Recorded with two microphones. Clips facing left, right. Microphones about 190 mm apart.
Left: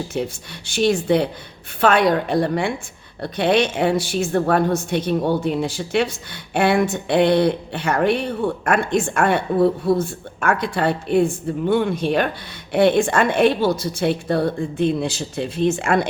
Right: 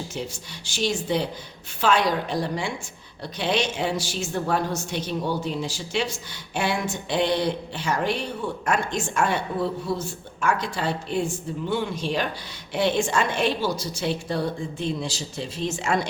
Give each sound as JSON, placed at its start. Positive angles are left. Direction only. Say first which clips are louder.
{"t": 0.1, "sound": "a woman's voice", "louder": "left 7 dB", "side_deg": 55}